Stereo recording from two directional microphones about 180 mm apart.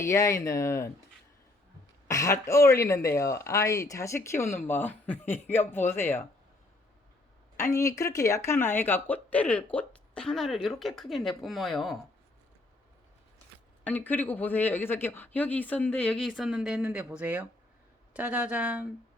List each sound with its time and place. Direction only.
0.0 s speech: 15° left (ahead or behind)
2.0 s speech: 15° left (ahead or behind)
7.5 s speech: 15° left (ahead or behind); by 11.9 s centre (ahead or behind)
13.8 s speech: 10° left (ahead or behind); by 18.9 s 10° right (ahead or behind)